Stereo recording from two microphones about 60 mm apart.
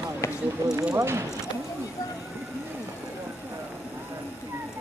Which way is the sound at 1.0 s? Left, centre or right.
Right.